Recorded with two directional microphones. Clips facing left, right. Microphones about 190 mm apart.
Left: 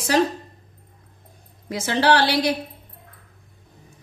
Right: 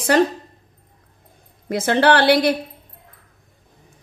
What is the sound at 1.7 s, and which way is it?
Speech, 55° right (ahead or behind).